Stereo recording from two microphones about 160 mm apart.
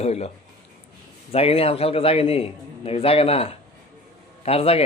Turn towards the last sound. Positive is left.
turn(degrees=35)  # may be behind; listen again after turning